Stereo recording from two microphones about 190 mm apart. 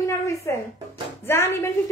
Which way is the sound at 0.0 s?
15° left (ahead or behind).